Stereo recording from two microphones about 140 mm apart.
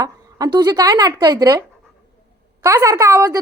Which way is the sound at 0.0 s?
25° right (ahead or behind).